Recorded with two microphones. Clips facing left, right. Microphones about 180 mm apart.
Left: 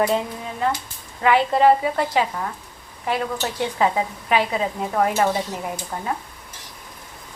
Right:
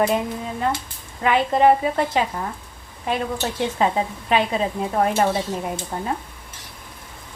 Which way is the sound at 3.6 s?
20° right (ahead or behind).